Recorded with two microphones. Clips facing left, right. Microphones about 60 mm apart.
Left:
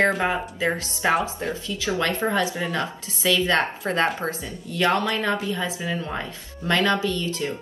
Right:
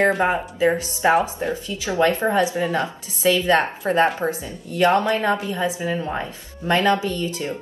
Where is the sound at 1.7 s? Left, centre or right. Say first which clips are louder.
Right 5 dB; right.